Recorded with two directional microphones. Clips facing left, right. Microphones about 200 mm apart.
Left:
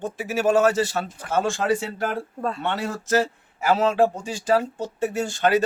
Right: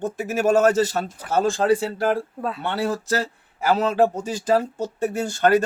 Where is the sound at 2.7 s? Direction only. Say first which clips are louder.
Even; 35° right (ahead or behind).